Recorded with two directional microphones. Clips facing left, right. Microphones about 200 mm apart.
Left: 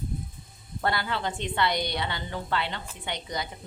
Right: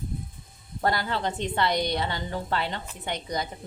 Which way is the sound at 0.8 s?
40° right (ahead or behind).